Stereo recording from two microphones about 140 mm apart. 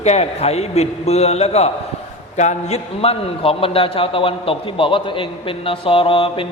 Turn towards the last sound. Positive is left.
turn(degrees=40)  # may be behind; listen again after turning